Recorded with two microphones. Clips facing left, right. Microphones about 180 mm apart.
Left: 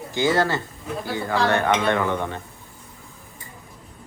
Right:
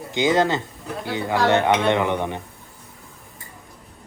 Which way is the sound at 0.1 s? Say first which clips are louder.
Right 2 dB; 20° right (ahead or behind).